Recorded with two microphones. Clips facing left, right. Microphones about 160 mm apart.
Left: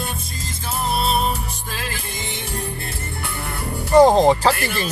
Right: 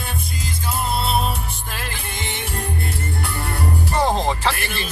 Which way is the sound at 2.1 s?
75° right (ahead or behind).